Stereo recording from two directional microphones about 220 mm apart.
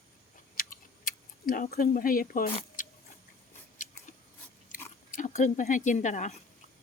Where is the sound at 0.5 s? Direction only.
40° left (ahead or behind).